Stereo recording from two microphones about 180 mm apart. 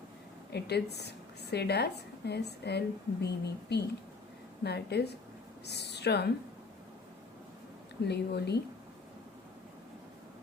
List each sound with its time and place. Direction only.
0.5 s a woman's voice: 65° left (ahead or behind)
8.0 s a woman's voice: 65° left (ahead or behind)